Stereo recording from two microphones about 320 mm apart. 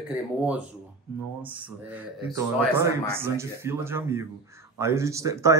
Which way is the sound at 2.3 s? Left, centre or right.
Centre.